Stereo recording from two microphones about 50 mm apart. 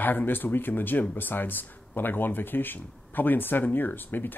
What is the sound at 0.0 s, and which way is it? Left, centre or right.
Speech, left.